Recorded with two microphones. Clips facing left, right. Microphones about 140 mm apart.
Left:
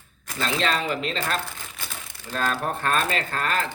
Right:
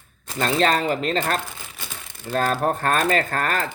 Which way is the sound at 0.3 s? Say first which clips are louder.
Right 5 dB; 45° right (ahead or behind).